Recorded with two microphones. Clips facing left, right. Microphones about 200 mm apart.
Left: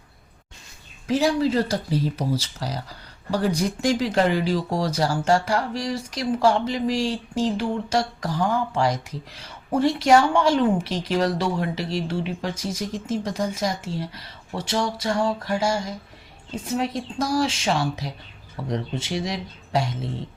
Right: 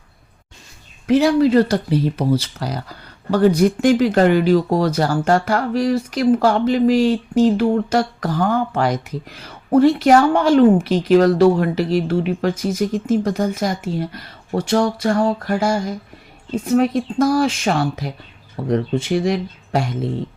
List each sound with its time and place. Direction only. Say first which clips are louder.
1.0 s speech: right 7 dB; 60° right (ahead or behind)